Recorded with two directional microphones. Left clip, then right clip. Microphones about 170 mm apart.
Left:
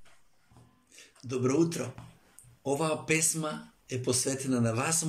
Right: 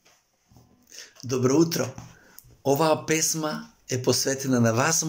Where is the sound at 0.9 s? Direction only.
10° left (ahead or behind).